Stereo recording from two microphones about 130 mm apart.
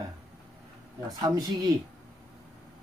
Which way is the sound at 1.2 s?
25° right (ahead or behind).